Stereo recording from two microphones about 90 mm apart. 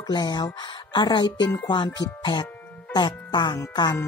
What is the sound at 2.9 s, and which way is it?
Music, 55° left (ahead or behind).